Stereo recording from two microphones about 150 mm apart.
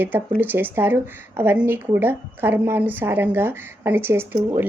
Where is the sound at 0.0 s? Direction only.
15° right (ahead or behind).